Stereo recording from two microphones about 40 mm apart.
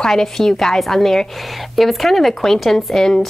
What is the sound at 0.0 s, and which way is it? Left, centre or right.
A woman's voice, centre.